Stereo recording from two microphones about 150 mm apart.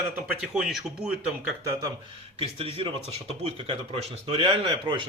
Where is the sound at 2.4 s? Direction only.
40° right (ahead or behind).